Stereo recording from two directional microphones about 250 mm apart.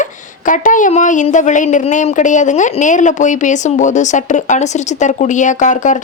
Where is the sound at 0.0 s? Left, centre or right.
Left.